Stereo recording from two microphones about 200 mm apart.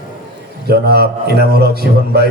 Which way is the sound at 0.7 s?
50° right (ahead or behind).